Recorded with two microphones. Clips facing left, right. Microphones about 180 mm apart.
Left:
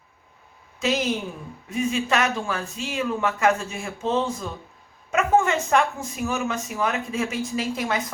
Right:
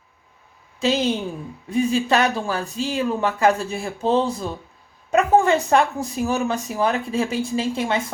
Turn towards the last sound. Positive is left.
turn(degrees=-30)  # may be behind; listen again after turning